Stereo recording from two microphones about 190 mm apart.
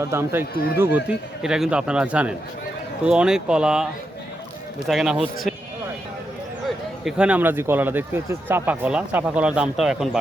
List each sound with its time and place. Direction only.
0.0 s speech: 15° right (ahead or behind)
4.9 s speech: centre (ahead or behind)
6.7 s speech: 5° right (ahead or behind)